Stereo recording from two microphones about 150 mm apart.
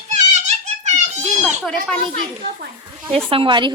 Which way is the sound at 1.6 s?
5° left (ahead or behind).